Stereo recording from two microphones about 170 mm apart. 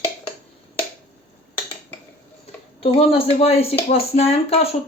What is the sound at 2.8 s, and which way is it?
Speech, 35° left (ahead or behind).